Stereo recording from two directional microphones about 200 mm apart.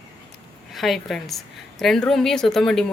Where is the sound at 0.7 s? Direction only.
Centre (ahead or behind).